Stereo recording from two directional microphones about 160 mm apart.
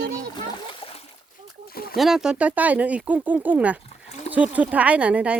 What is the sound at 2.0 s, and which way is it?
Speech, centre (ahead or behind).